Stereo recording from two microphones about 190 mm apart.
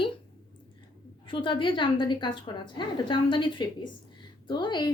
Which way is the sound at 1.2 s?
25° left (ahead or behind).